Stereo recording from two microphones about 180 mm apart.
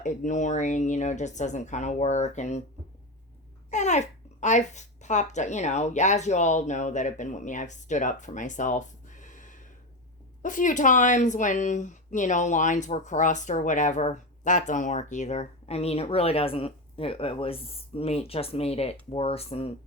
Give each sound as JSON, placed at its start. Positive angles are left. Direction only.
{"t": 0.0, "sound": "speech", "side_deg": 45}
{"t": 3.7, "sound": "a child's voice", "side_deg": 40}